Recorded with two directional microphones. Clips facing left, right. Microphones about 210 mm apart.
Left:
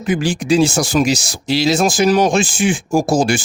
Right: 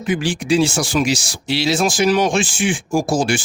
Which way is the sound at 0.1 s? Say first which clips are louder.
Left 2 dB; 40° left (ahead or behind).